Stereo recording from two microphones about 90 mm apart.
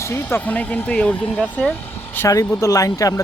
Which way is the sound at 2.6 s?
40° left (ahead or behind).